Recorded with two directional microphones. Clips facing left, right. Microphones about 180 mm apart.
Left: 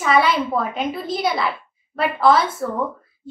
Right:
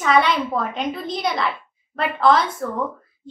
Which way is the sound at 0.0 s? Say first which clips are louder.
Even; 5° left (ahead or behind).